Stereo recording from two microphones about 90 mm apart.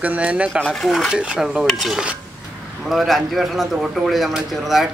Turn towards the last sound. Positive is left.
turn(degrees=0)  # may be behind; listen again after turning